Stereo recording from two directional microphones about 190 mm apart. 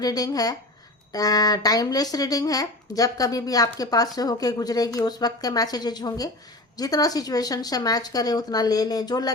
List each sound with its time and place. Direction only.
0.0 s speech: 20° left (ahead or behind)